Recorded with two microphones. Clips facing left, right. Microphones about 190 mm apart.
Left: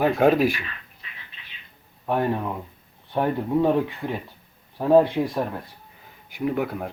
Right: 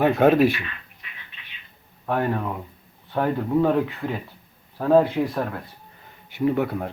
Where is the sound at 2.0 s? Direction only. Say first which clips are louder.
Even; 15° left (ahead or behind).